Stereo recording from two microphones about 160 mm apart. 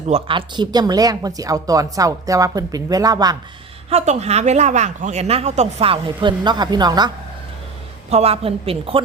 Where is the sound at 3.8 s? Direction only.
45° right (ahead or behind); by 7.1 s 25° right (ahead or behind).